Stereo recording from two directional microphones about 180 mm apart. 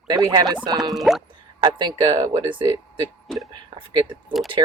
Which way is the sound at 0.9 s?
Centre (ahead or behind).